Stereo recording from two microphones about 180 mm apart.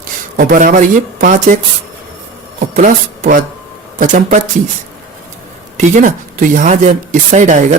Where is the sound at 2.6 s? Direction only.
50° right (ahead or behind).